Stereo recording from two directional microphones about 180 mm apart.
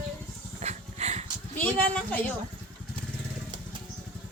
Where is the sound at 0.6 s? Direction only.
40° right (ahead or behind).